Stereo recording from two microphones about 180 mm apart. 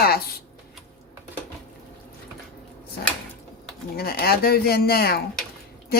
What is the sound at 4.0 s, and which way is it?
Speech, 60° left (ahead or behind).